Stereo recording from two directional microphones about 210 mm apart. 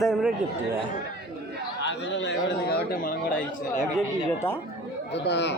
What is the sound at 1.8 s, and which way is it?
A man's voice, 60° left (ahead or behind).